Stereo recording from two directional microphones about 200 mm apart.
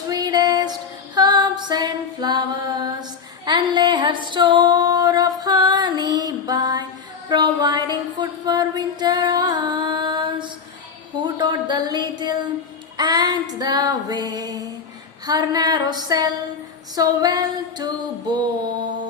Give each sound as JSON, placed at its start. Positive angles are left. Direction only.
{"t": 0.1, "sound": "music", "side_deg": -20}
{"t": 3.4, "sound": "female singing", "side_deg": -20}
{"t": 7.3, "sound": "music", "side_deg": -20}
{"t": 11.2, "sound": "a sound", "side_deg": -20}